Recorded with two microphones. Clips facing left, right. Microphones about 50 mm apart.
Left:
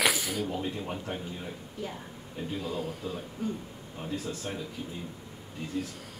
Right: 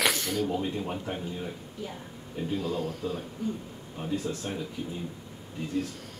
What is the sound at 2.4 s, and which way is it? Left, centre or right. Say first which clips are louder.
Speech: right 4 dB; centre.